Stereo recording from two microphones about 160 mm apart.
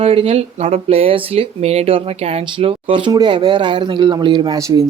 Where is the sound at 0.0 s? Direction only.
40° right (ahead or behind).